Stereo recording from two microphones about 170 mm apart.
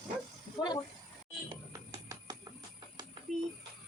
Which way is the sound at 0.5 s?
25° left (ahead or behind).